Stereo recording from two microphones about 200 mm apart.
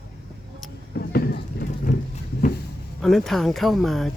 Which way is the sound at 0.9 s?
55° left (ahead or behind).